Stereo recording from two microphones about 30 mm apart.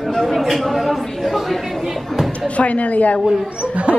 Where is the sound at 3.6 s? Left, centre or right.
Right.